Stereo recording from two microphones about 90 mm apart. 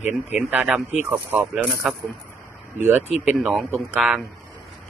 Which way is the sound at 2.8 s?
25° right (ahead or behind).